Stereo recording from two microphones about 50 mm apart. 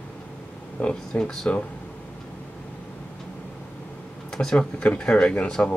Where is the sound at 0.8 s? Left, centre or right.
Centre.